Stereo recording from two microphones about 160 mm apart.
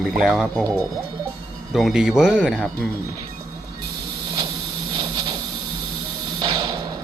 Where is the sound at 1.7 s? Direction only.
Centre (ahead or behind).